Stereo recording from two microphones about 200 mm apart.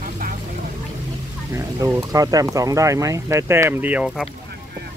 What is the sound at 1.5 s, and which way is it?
Speech, 15° right (ahead or behind).